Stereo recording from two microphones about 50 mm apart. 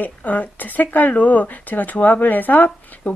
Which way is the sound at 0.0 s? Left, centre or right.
Left.